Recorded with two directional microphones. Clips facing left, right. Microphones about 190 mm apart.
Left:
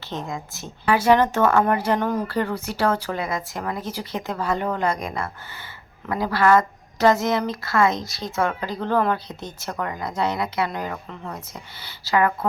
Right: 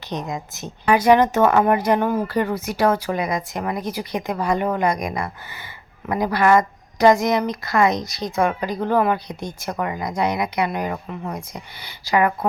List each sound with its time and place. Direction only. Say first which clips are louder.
0.1 s a woman's voice: right 3 dB; 20° right (ahead or behind)